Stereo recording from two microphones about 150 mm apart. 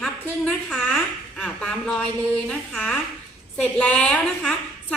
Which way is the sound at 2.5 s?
10° left (ahead or behind).